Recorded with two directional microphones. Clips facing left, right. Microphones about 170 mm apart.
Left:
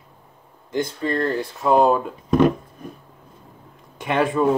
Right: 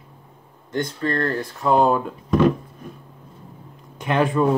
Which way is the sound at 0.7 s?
5° left (ahead or behind).